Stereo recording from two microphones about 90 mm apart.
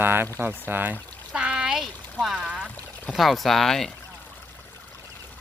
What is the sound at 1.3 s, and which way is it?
Speech, 10° right (ahead or behind).